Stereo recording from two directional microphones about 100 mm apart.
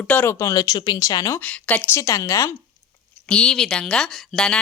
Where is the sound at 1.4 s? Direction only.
15° left (ahead or behind).